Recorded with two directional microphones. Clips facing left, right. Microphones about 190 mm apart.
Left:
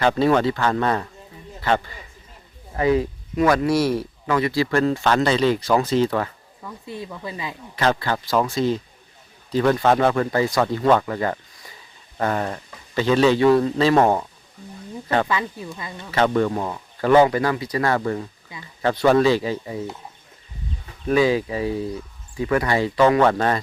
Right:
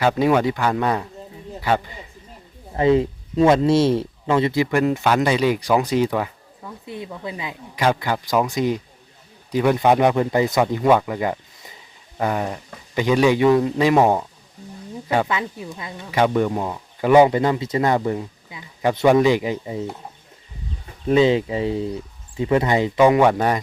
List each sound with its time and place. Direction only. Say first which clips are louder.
0.0 s speech: even; 10° right (ahead or behind)
2.7 s speech: right 3 dB; 25° right (ahead or behind)
21.1 s speech: right 2 dB; 25° right (ahead or behind)